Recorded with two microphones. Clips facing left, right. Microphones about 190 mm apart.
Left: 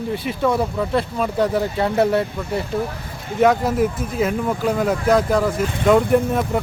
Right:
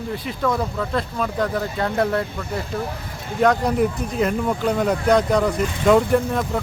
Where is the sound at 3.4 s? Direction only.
Centre (ahead or behind).